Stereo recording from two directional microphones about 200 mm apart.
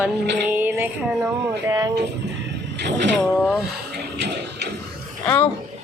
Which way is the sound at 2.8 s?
60° right (ahead or behind).